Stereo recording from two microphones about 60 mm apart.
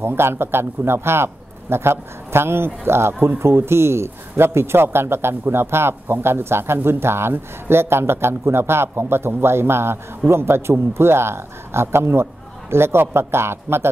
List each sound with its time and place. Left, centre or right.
0.0 s a man's voice: right